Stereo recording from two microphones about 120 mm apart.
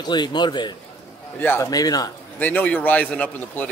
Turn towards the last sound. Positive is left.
turn(degrees=10)  # may be behind; listen again after turning